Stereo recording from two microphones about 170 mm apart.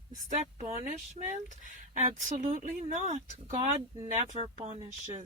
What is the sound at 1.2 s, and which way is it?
A woman's voice, 40° right (ahead or behind).